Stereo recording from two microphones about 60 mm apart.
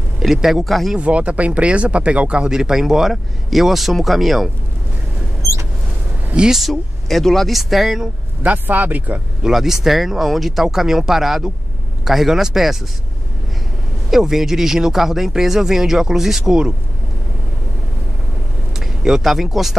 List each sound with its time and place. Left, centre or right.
0.2 s speech: centre
0.9 s speech: right; by 4.5 s centre
6.3 s speech: centre
6.6 s speech: centre
8.4 s speech: right
9.4 s speech: centre
14.1 s speech: centre
18.8 s speech: centre